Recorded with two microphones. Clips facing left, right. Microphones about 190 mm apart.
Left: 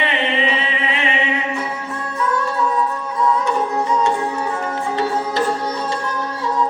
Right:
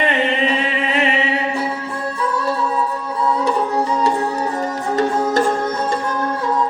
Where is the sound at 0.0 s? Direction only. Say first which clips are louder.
Right 2 dB; 45° right (ahead or behind).